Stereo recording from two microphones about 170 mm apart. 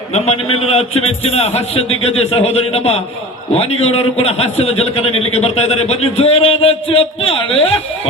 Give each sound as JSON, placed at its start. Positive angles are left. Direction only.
{"t": 0.1, "sound": "a man's voice", "side_deg": 35}